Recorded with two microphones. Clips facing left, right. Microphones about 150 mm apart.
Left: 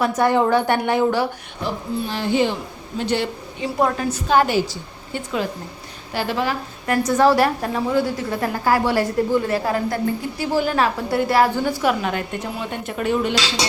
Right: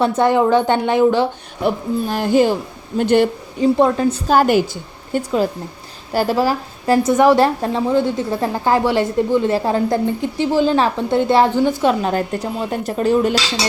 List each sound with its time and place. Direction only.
0.0 s a woman's voice: 30° right (ahead or behind)
0.3 s a woman's voice: 15° right (ahead or behind)
1.6 s speech: 50° right (ahead or behind)
3.6 s a woman's voice: 25° right (ahead or behind)
4.3 s a woman's voice: 45° right (ahead or behind)
6.1 s a woman's voice: 40° right (ahead or behind)